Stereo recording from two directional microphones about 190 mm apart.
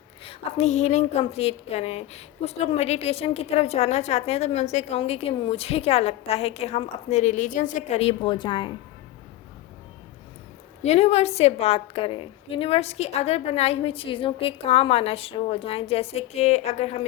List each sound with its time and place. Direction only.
0.3 s a woman's voice: 35° left (ahead or behind)
10.8 s a woman's voice: 35° left (ahead or behind)